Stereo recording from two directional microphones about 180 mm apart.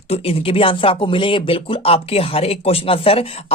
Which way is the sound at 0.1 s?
30° left (ahead or behind).